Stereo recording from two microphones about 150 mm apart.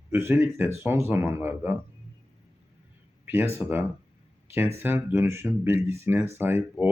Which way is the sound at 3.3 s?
15° right (ahead or behind).